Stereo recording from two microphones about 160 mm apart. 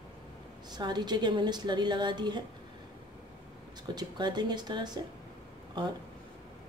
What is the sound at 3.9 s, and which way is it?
A woman's voice, 25° right (ahead or behind).